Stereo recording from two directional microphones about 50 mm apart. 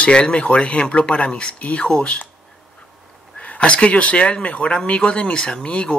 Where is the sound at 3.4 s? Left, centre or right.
Left.